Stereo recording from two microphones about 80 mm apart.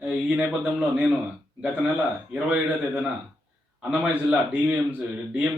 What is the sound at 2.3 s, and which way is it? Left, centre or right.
Speech, centre.